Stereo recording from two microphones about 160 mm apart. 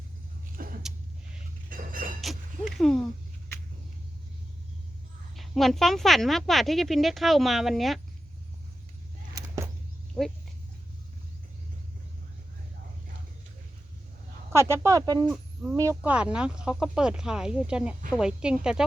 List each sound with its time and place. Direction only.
0.5 s vehicle: 60° right (ahead or behind)
0.8 s a sound: 5° right (ahead or behind)
1.7 s a sound: 60° right (ahead or behind)
2.2 s music: centre (ahead or behind)
5.4 s speech: centre (ahead or behind)
10.2 s speech: 5° left (ahead or behind)
14.5 s speech: 15° right (ahead or behind)
16.0 s speech: 5° right (ahead or behind)